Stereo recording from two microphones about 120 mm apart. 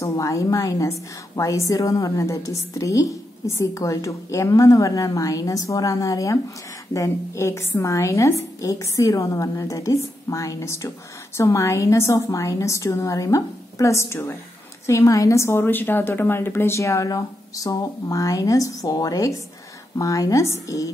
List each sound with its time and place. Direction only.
0.0 s a woman's voice: 25° left (ahead or behind)